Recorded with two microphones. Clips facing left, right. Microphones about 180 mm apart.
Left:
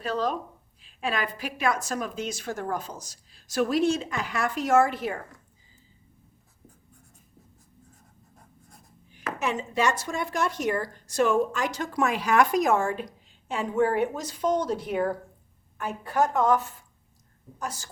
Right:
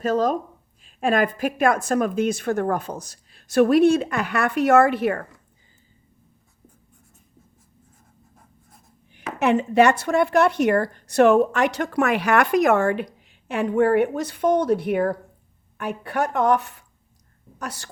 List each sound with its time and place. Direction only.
0.0 s a woman's voice: 45° right (ahead or behind); by 5.2 s 65° right (ahead or behind)
9.4 s a woman's voice: 65° right (ahead or behind)